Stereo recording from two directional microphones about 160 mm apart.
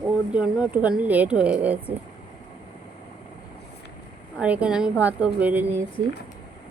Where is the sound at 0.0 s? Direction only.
5° right (ahead or behind).